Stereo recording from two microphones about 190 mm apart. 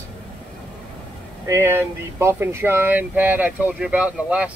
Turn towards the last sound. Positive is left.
turn(degrees=-5)  # may be behind; listen again after turning